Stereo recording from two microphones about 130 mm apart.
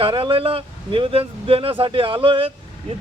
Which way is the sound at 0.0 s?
45° right (ahead or behind).